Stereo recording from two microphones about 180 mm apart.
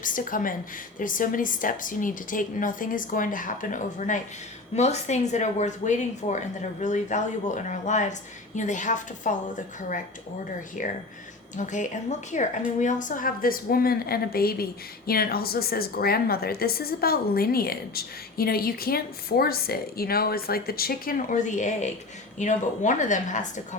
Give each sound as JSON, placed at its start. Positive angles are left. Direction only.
{"t": 0.0, "sound": "a woman's voice", "side_deg": 50}